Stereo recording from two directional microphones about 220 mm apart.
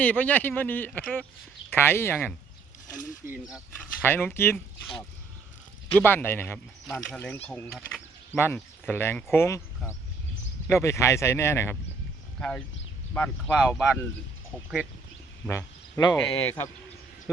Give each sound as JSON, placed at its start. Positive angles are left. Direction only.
{"t": 0.0, "sound": "speech", "side_deg": 5}
{"t": 3.2, "sound": "speech", "side_deg": -5}
{"t": 15.4, "sound": "speech", "side_deg": 15}